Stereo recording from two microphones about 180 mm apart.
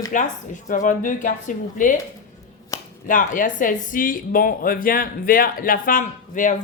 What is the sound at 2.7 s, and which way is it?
Finger snapping, 15° left (ahead or behind).